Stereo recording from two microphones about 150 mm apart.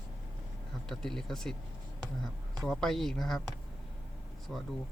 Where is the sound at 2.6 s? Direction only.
5° left (ahead or behind).